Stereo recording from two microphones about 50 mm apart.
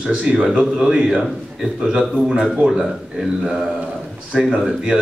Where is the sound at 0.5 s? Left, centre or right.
Centre.